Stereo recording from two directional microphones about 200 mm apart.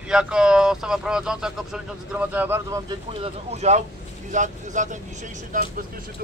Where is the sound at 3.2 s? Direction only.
35° right (ahead or behind).